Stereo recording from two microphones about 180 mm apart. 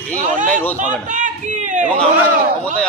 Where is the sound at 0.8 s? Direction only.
45° right (ahead or behind).